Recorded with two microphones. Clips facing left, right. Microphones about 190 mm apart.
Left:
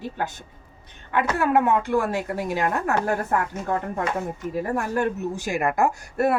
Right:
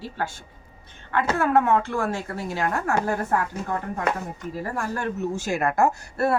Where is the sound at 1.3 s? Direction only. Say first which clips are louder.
Even; 15° left (ahead or behind).